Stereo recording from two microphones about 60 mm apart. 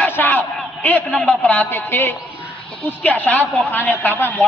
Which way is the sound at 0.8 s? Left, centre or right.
Left.